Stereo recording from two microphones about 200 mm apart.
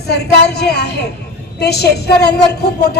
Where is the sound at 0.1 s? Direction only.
55° left (ahead or behind).